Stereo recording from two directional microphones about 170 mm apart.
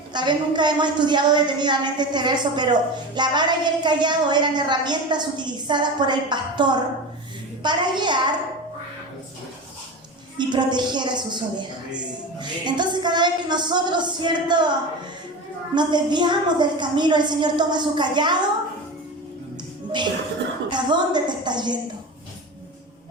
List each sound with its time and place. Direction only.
0.1 s a woman's voice: 25° right (ahead or behind)
10.3 s a woman's voice: 25° right (ahead or behind)
15.7 s a woman's voice: 25° right (ahead or behind)
20.7 s a woman's voice: 25° right (ahead or behind)